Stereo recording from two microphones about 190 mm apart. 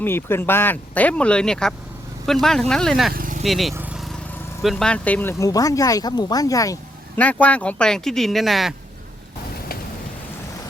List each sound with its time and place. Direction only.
0.0 s speech: 10° left (ahead or behind)
3.1 s vehicle: 45° right (ahead or behind)
3.4 s speech: centre (ahead or behind)
3.8 s vehicle: 5° right (ahead or behind)
4.6 s speech: centre (ahead or behind)